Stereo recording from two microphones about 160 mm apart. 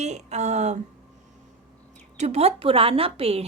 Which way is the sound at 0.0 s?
45° right (ahead or behind).